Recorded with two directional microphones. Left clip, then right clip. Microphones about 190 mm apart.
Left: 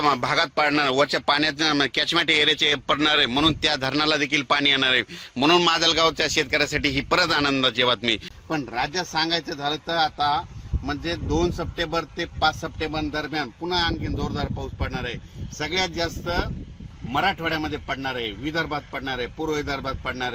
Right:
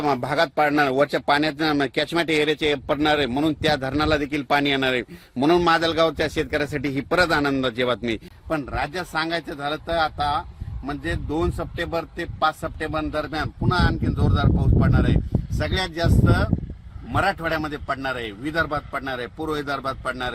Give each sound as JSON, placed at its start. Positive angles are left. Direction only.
{"t": 0.0, "sound": "a man's voice", "side_deg": -40}
{"t": 8.4, "sound": "a man's voice", "side_deg": -10}